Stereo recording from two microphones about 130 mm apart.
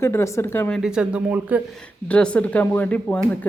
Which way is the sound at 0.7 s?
5° right (ahead or behind).